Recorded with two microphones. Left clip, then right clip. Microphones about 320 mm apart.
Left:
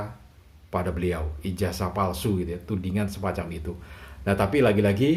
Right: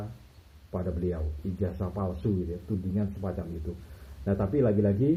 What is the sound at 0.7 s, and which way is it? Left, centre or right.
A man's voice, left.